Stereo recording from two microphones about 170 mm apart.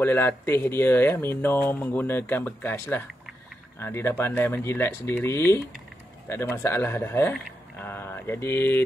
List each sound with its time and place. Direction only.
0.0 s speech: 10° left (ahead or behind)